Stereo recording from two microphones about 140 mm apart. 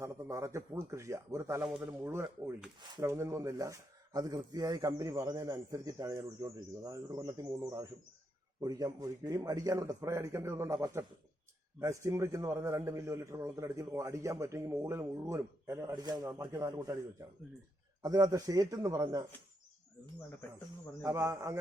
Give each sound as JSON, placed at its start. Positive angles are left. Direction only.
{"t": 0.0, "sound": "a man's voice", "side_deg": -20}
{"t": 18.0, "sound": "a man's voice", "side_deg": -25}
{"t": 21.0, "sound": "a man's voice", "side_deg": -20}